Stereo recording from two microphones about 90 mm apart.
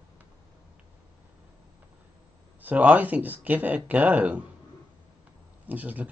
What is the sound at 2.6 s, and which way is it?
Speech, 15° right (ahead or behind).